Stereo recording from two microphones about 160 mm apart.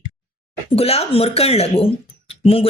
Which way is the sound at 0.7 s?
40° left (ahead or behind).